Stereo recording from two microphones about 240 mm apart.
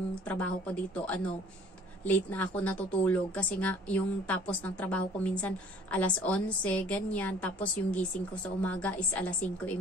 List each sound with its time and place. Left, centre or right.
0.3 s a woman's voice: centre